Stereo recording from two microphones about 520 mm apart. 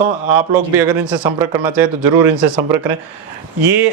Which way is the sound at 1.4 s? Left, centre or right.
Centre.